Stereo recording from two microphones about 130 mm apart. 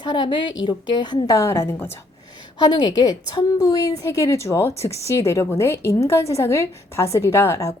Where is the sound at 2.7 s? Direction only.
30° left (ahead or behind).